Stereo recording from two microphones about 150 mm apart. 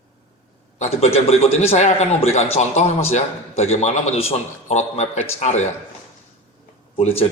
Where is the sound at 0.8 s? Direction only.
45° left (ahead or behind).